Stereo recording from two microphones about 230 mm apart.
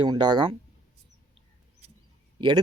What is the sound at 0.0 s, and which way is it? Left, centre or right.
Speech, centre.